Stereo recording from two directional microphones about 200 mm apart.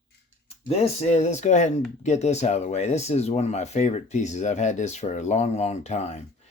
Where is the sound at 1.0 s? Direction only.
35° left (ahead or behind).